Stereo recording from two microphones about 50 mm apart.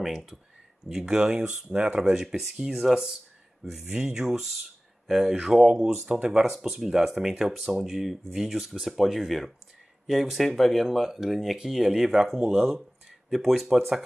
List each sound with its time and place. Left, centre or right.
0.0 s speech: centre
6.1 s speech: right
6.5 s speech: centre